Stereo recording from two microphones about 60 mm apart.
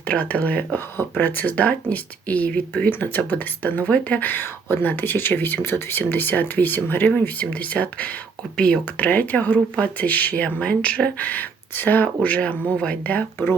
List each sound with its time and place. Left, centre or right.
0.1 s speech: left
9.0 s speech: left